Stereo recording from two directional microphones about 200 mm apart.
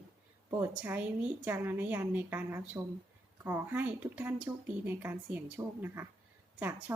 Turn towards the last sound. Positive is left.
turn(degrees=-10)  # may be behind; listen again after turning